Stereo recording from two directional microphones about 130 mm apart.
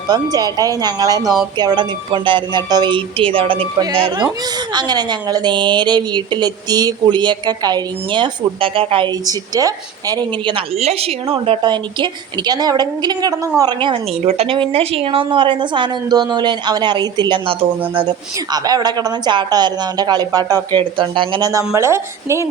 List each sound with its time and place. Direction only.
0.1 s a woman's voice: 30° right (ahead or behind)
9.2 s a woman's voice: 30° right (ahead or behind)
10.8 s a woman's voice: 50° right (ahead or behind)
14.3 s a woman's voice: 50° right (ahead or behind)
18.5 s a woman's voice: 30° right (ahead or behind)
21.7 s a woman's voice: 20° right (ahead or behind)